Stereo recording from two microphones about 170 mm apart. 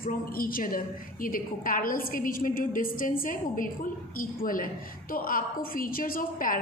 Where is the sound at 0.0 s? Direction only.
60° left (ahead or behind).